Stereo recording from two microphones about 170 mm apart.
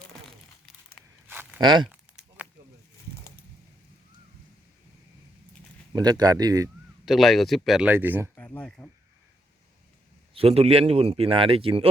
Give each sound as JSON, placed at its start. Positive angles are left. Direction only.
{"t": 1.3, "sound": "a sound", "side_deg": -10}
{"t": 1.6, "sound": "speech", "side_deg": -25}
{"t": 1.9, "sound": "a sound", "side_deg": -10}
{"t": 5.9, "sound": "speech", "side_deg": -25}
{"t": 7.0, "sound": "speech", "side_deg": 0}
{"t": 8.4, "sound": "speech", "side_deg": 10}
{"t": 10.3, "sound": "speech", "side_deg": -35}